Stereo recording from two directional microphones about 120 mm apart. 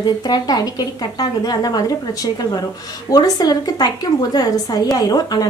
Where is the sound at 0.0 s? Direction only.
35° left (ahead or behind).